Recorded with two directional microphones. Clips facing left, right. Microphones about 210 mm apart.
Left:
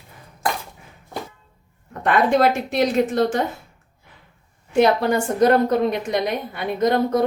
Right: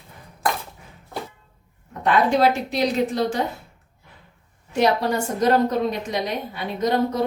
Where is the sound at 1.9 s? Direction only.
55° left (ahead or behind).